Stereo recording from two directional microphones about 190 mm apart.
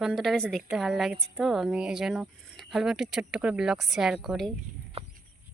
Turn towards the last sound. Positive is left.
turn(degrees=0)  # may be behind; listen again after turning